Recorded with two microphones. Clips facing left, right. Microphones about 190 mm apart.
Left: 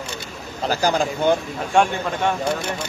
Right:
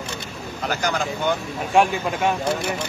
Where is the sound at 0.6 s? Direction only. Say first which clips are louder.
Left 4 dB; 35° left (ahead or behind).